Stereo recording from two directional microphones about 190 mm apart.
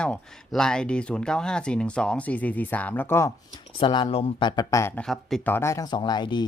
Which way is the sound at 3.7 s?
25° left (ahead or behind).